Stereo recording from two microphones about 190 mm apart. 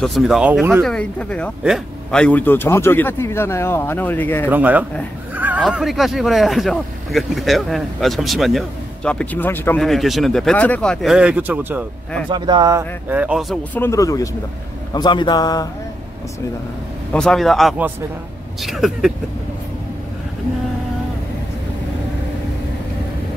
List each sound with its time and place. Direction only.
0.0 s a man's voice: centre (ahead or behind)
4.5 s speech: 10° right (ahead or behind)
12.3 s speech: 25° right (ahead or behind)
13.1 s speech: 5° right (ahead or behind)
13.7 s a man's voice: 15° left (ahead or behind)
17.1 s speech: 5° left (ahead or behind)